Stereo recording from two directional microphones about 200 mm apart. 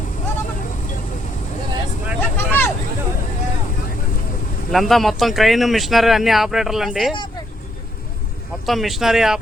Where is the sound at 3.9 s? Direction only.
45° left (ahead or behind).